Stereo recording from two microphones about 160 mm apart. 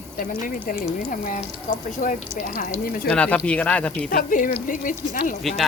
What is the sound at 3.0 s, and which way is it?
Speech, 5° left (ahead or behind).